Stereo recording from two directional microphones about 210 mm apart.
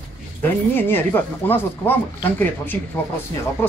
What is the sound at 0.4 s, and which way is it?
Speech, 10° left (ahead or behind).